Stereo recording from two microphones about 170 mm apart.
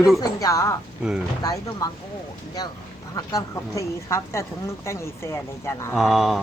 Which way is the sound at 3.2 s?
20° left (ahead or behind).